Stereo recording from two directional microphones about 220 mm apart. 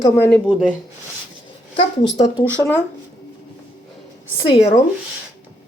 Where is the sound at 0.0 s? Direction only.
10° left (ahead or behind).